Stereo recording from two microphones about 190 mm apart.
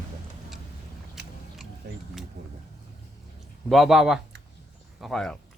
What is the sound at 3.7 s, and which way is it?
Speech, centre (ahead or behind).